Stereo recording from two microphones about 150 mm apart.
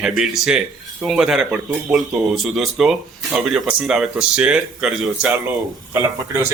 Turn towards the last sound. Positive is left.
turn(degrees=-15)  # may be behind; listen again after turning